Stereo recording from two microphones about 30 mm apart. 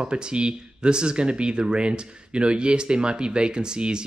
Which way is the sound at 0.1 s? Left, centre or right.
Right.